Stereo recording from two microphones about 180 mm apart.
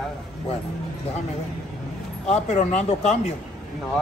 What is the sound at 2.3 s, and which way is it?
Speech, 40° left (ahead or behind).